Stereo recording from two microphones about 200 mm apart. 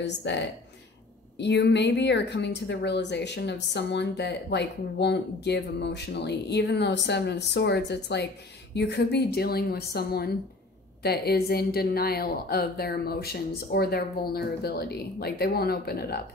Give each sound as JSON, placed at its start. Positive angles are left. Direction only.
{"t": 0.0, "sound": "a woman's voice", "side_deg": 60}
{"t": 1.4, "sound": "a woman's voice", "side_deg": 60}